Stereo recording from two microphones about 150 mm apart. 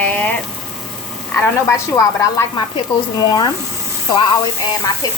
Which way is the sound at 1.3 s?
15° left (ahead or behind).